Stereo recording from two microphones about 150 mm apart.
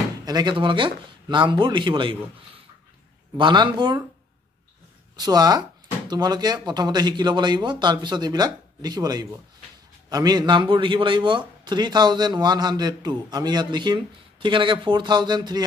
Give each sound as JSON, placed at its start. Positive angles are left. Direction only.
{"t": 0.2, "sound": "speech", "side_deg": -25}
{"t": 3.3, "sound": "speech", "side_deg": -30}
{"t": 5.1, "sound": "a man's voice", "side_deg": -25}